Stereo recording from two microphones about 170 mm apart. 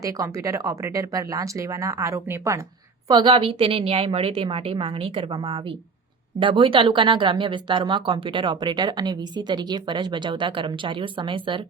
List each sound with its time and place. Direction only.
0.0 s speech: 20° right (ahead or behind)
3.1 s a woman's voice: 30° right (ahead or behind)